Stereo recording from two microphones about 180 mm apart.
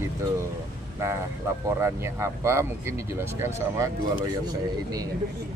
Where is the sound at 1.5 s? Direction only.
15° right (ahead or behind).